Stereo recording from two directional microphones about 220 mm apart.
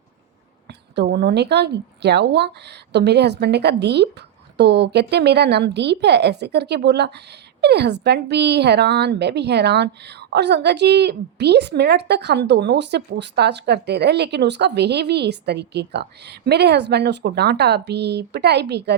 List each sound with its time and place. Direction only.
0.9 s a woman's voice: 50° right (ahead or behind)